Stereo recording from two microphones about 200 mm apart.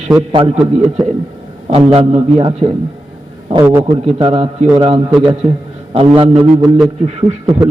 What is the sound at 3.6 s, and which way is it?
Speech, 10° right (ahead or behind).